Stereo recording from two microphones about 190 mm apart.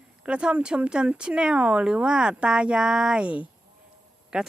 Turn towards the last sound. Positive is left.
turn(degrees=-5)  # may be behind; listen again after turning